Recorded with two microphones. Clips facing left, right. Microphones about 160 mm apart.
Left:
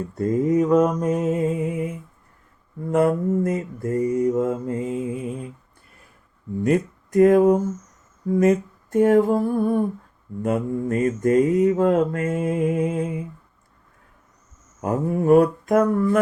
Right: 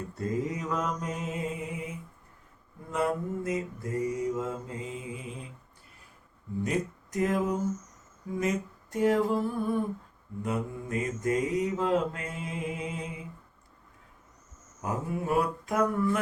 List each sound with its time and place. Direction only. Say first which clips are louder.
0.2 s mantra: left 13 dB; 50° left (ahead or behind)
6.7 s speech: left 12 dB; 55° left (ahead or behind)
8.3 s mantra: left 12 dB; 50° left (ahead or behind)
14.8 s mantra: left 10 dB; 50° left (ahead or behind)